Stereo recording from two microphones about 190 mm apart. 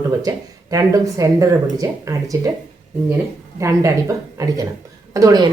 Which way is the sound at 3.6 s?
15° right (ahead or behind).